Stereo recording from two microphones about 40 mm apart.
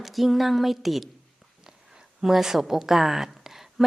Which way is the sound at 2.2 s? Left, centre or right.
Centre.